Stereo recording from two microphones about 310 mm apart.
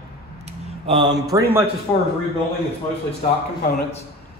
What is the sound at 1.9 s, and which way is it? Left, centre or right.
Speech, centre.